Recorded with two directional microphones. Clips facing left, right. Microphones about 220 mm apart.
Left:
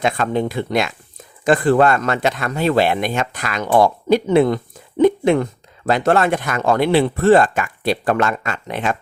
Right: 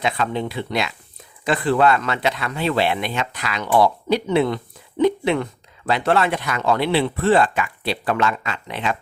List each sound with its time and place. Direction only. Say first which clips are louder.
0.0 s speech: left 4 dB; 50° left (ahead or behind)